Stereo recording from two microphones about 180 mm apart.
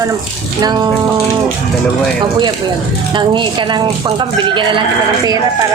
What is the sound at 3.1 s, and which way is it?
A woman's voice, 25° right (ahead or behind).